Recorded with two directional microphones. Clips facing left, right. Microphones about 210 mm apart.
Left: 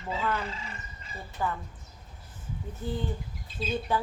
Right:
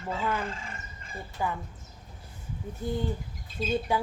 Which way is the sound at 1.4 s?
10° right (ahead or behind).